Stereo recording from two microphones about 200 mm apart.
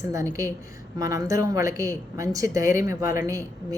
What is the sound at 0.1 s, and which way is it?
A woman's voice, 15° right (ahead or behind).